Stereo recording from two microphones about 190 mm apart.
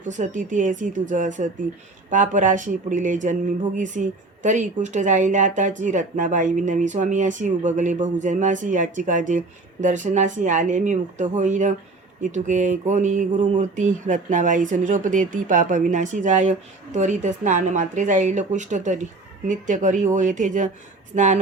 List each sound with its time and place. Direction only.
0.0 s speech: 40° right (ahead or behind)